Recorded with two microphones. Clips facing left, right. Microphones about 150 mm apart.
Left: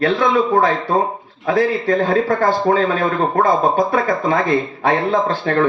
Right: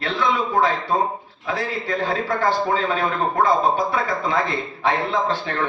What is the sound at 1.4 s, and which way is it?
A man's voice, 50° left (ahead or behind).